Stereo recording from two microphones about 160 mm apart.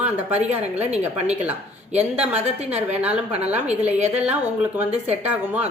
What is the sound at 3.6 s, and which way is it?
Speech, 45° right (ahead or behind).